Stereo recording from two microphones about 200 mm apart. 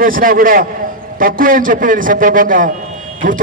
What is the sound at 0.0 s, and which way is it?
A man's voice, 45° right (ahead or behind).